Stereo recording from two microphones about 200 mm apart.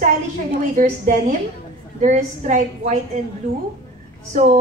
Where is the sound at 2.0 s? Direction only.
35° right (ahead or behind).